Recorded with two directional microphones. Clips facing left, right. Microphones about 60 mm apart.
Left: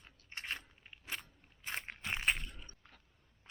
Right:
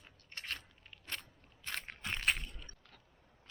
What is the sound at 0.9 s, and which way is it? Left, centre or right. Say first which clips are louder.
Crackle: left 1 dB; centre.